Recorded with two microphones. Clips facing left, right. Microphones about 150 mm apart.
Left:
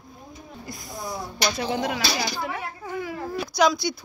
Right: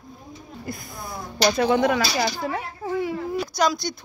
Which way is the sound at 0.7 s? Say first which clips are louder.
Right 2 dB; 55° right (ahead or behind).